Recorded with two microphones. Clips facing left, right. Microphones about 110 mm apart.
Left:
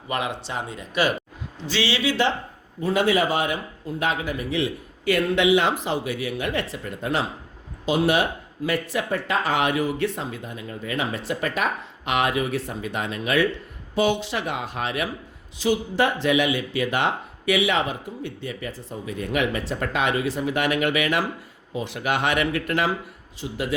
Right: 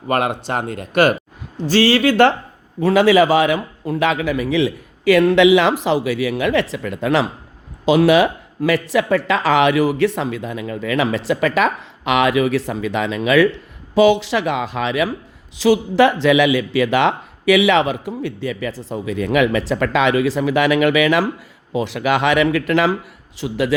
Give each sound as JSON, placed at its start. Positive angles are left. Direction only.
{"t": 0.1, "sound": "speech", "side_deg": -55}
{"t": 1.6, "sound": "a man's voice", "side_deg": -50}
{"t": 2.8, "sound": "speech", "side_deg": -90}